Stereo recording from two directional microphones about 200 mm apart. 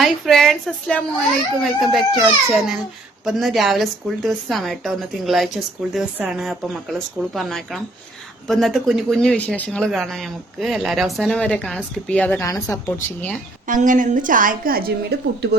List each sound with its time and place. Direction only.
0.0 s speech: centre (ahead or behind)
13.7 s a woman's voice: 40° right (ahead or behind)